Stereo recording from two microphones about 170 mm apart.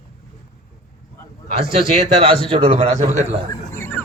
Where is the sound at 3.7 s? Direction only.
10° left (ahead or behind).